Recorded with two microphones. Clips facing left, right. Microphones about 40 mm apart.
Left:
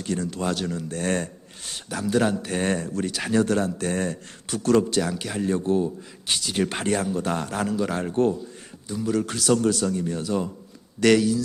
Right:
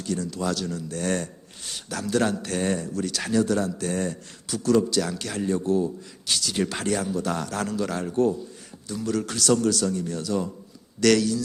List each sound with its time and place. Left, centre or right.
0.0 s a man's voice: left
1.9 s a man's voice: centre
2.6 s a man's voice: left
3.1 s a man's voice: centre
3.3 s a man's voice: left
4.9 s a man's voice: centre
5.5 s a man's voice: left
7.6 s a man's voice: centre
8.1 s a man's voice: left
8.9 s a man's voice: centre
9.6 s a man's voice: left